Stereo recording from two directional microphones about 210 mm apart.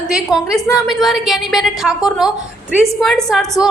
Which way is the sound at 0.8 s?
Centre (ahead or behind).